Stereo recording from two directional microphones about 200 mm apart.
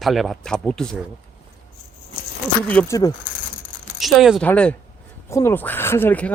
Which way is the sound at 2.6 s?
10° left (ahead or behind).